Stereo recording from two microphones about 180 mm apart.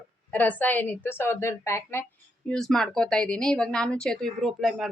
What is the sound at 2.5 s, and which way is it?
Speech, centre (ahead or behind).